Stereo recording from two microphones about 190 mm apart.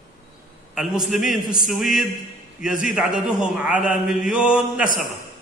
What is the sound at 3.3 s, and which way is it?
A man's voice, 5° right (ahead or behind).